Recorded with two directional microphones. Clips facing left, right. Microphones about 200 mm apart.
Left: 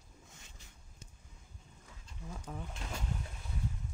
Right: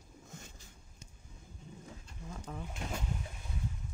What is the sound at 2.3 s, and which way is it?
Speech, 5° left (ahead or behind).